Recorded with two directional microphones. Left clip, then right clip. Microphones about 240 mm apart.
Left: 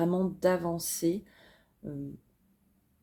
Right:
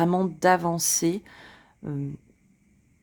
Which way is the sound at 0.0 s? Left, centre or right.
Right.